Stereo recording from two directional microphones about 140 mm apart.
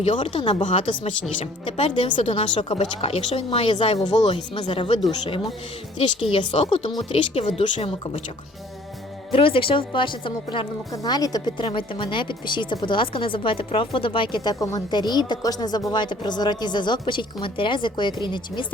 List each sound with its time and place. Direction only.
0.0 s a woman's voice: 45° left (ahead or behind)
1.6 s a woman's voice: 40° left (ahead or behind)
9.3 s a woman's voice: 40° left (ahead or behind)